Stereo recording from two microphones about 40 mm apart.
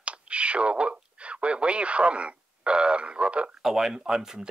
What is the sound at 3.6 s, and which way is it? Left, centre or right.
Speech, centre.